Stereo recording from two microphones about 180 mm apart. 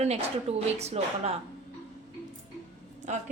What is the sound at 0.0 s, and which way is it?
A woman's voice, 35° right (ahead or behind).